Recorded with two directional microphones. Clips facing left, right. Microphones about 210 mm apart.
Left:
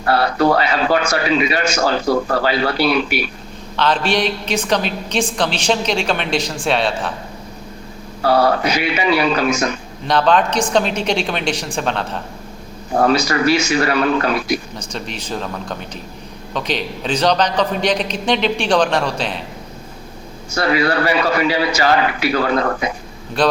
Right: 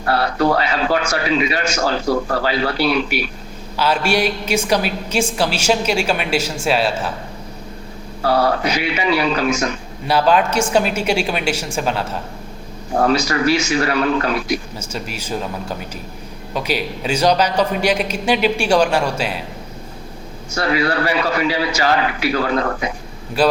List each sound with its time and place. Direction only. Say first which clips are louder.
0.1 s a man's voice: left 2 dB; 70° left (ahead or behind)
3.8 s a man's voice: even; 10° right (ahead or behind)
8.3 s a man's voice: left 2 dB; 70° left (ahead or behind)
10.1 s a man's voice: even; 10° right (ahead or behind)
13.1 s a man's voice: left 1 dB; 65° left (ahead or behind)
14.9 s a man's voice: right 1 dB; 5° right (ahead or behind)
20.6 s a man's voice: left 2 dB; 65° left (ahead or behind)
23.4 s a man's voice: right 1 dB; 10° right (ahead or behind)